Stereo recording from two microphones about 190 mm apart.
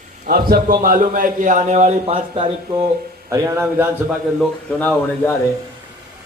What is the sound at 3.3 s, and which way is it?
Speech, 15° right (ahead or behind).